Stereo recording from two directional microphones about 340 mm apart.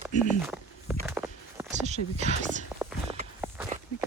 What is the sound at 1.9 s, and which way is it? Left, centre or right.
Speech, centre.